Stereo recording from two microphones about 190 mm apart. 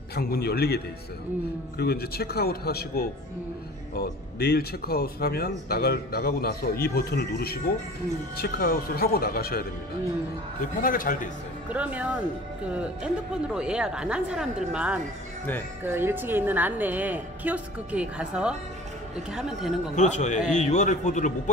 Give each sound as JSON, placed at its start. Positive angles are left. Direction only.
{"t": 0.1, "sound": "speech", "side_deg": 55}
{"t": 10.8, "sound": "speech", "side_deg": 45}
{"t": 11.7, "sound": "a woman's voice", "side_deg": -5}
{"t": 20.0, "sound": "a man's voice", "side_deg": 40}